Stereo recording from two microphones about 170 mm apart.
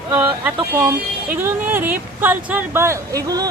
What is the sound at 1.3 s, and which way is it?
Speech, 10° right (ahead or behind).